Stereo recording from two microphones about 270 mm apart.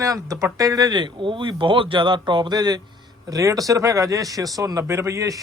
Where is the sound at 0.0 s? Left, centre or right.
Centre.